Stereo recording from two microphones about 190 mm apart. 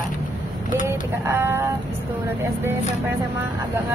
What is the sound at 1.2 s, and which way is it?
Speech, 15° right (ahead or behind).